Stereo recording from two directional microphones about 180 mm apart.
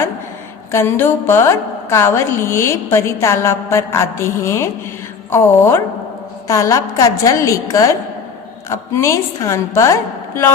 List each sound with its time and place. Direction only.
0.7 s a woman's voice: 15° left (ahead or behind)